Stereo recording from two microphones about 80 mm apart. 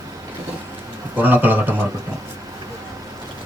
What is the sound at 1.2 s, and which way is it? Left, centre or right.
Speech, right.